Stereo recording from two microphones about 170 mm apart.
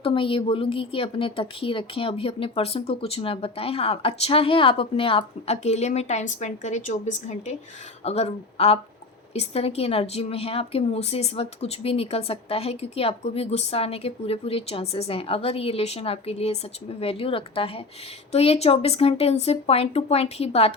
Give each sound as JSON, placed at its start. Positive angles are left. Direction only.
{"t": 0.0, "sound": "a woman's voice", "side_deg": 30}